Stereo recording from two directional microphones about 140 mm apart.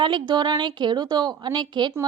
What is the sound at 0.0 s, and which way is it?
A woman's voice, 30° right (ahead or behind).